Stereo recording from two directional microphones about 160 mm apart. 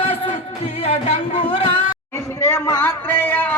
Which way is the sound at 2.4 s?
20° left (ahead or behind).